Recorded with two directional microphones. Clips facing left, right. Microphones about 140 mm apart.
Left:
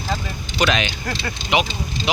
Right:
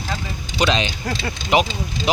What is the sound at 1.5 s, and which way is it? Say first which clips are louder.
Speech: right 3 dB; 40° right (ahead or behind).